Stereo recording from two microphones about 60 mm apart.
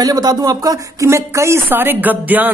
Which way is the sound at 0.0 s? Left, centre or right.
Right.